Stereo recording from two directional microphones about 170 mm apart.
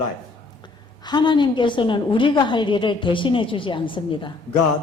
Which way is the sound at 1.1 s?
25° left (ahead or behind).